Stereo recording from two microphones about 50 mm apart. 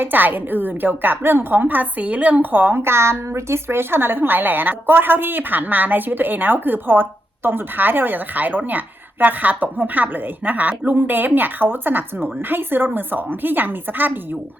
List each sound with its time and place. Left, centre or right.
0.0 s a woman's voice: right